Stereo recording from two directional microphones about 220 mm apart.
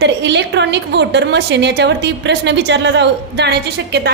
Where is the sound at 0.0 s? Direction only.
50° right (ahead or behind).